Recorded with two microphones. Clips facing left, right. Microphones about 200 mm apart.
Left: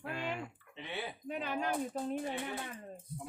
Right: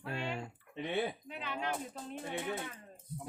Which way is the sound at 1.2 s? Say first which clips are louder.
Left 3 dB; 45° left (ahead or behind).